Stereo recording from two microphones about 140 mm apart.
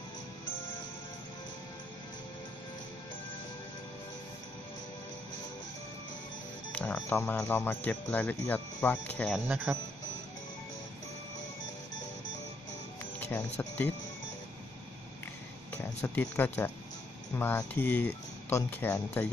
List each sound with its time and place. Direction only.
6.7 s speech: 10° left (ahead or behind)
9.7 s speech: 10° right (ahead or behind)
13.0 s music: 20° left (ahead or behind)
13.6 s speech: 15° left (ahead or behind)
15.7 s speech: 15° left (ahead or behind)